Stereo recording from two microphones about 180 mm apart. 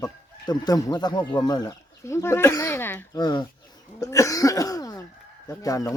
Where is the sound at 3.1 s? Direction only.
25° left (ahead or behind).